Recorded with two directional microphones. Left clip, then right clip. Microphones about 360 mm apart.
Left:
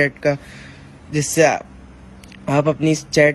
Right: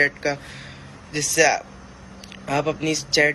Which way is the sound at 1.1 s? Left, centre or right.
Centre.